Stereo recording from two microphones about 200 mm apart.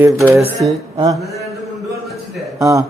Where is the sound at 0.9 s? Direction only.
20° right (ahead or behind).